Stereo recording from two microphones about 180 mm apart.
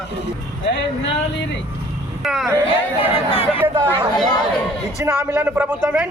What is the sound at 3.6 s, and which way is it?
A man's voice, 20° right (ahead or behind).